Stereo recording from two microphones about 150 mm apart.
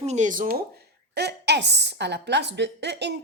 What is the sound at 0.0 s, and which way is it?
Speech, 50° right (ahead or behind).